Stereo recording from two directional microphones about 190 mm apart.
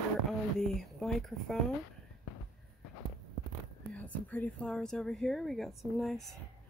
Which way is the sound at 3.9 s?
10° left (ahead or behind).